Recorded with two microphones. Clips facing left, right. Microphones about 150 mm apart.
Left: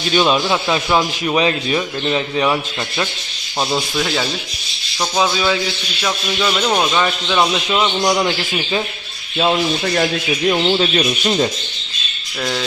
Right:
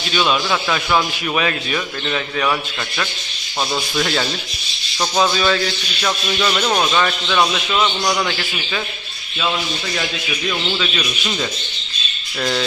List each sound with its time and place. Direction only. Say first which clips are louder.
0.1 s speech: left 4 dB; 35° left (ahead or behind)
0.4 s speech: left 3 dB; 20° left (ahead or behind)
3.7 s speech: left 1 dB; 10° left (ahead or behind)
6.0 s speech: even; 5° left (ahead or behind); by 8.8 s 25° left (ahead or behind)
9.4 s speech: left 6 dB; 45° left (ahead or behind)